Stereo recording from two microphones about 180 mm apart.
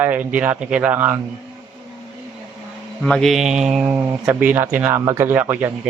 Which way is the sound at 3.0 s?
Centre (ahead or behind).